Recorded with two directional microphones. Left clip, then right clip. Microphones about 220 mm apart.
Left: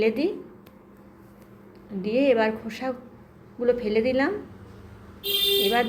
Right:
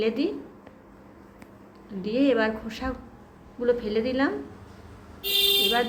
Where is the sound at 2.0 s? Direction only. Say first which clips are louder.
Left 2 dB; 10° left (ahead or behind).